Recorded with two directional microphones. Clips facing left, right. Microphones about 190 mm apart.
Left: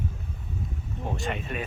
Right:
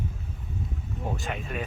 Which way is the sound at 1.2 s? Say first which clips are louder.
Left 2 dB; centre (ahead or behind).